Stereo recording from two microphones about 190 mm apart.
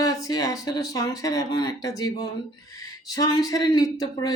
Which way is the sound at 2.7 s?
20° left (ahead or behind).